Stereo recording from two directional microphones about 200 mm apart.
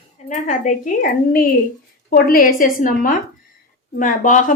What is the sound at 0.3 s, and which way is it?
Speech, 40° left (ahead or behind).